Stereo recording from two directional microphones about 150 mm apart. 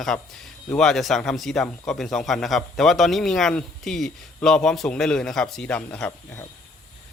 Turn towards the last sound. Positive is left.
turn(degrees=10)  # may be behind; listen again after turning